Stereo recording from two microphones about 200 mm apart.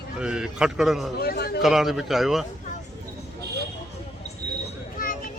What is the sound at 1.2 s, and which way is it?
Speech, 50° left (ahead or behind).